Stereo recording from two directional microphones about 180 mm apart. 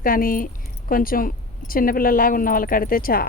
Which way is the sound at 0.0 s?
50° left (ahead or behind).